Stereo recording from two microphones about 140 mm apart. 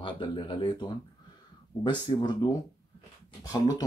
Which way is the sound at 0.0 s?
35° left (ahead or behind).